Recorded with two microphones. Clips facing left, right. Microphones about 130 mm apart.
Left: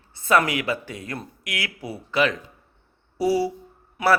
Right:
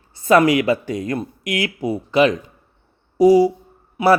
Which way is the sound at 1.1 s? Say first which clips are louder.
Right 9 dB; 20° right (ahead or behind).